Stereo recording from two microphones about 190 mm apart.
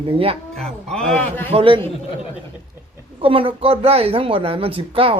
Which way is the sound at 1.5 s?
30° right (ahead or behind).